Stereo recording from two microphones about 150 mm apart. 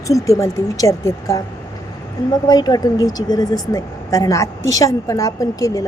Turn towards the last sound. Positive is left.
turn(degrees=20)  # may be behind; listen again after turning